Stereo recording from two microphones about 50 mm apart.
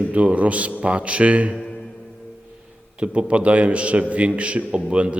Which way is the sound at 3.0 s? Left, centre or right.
Right.